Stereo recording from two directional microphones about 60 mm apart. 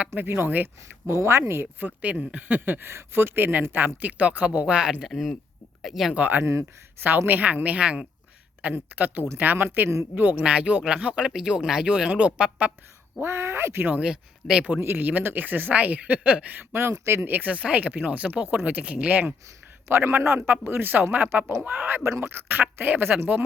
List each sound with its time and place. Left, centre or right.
0.1 s speech: right
1.1 s speech: right
2.0 s speech: right
5.1 s speech: centre
6.1 s speech: right
6.4 s speech: right
7.3 s speech: right
8.7 s speech: right
10.4 s speech: centre
13.2 s speech: right
13.8 s speech: right
14.1 s speech: centre
14.9 s speech: right
19.9 s speech: right